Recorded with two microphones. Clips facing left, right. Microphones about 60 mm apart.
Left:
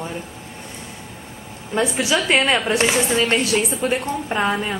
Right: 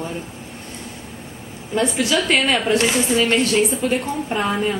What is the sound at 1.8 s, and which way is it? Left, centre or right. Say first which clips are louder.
A woman's voice: even; centre.